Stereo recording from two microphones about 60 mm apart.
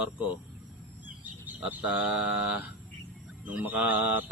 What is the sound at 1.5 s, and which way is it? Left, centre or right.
Speech, right.